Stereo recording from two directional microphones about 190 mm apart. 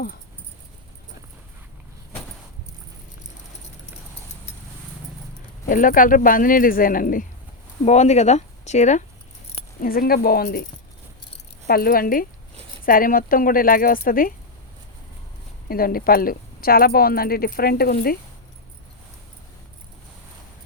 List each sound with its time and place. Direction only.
5.6 s a woman's voice: 45° left (ahead or behind)
9.8 s a woman's voice: 50° left (ahead or behind)
11.7 s a woman's voice: 50° left (ahead or behind)
15.7 s a woman's voice: 50° left (ahead or behind)